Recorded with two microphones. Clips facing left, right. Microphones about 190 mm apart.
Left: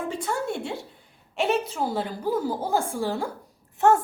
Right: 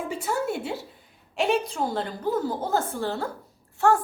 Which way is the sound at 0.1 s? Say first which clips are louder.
Right 1 dB; 5° right (ahead or behind).